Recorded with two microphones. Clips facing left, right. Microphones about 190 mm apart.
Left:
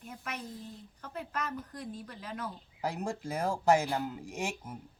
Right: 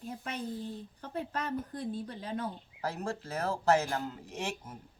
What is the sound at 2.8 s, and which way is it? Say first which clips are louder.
Speech: left 1 dB; 15° left (ahead or behind).